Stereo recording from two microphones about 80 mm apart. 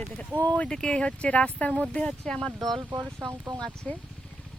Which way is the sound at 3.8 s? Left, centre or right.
Centre.